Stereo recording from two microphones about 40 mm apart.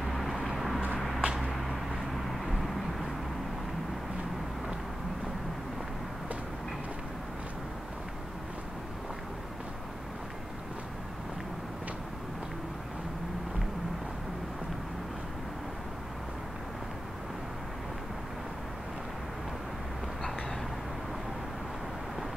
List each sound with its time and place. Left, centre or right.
0.0 s vehicle: centre
0.9 s a sound: centre
2.4 s vehicle: centre